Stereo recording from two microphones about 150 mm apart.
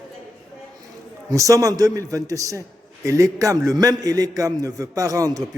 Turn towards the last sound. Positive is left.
turn(degrees=-25)  # may be behind; listen again after turning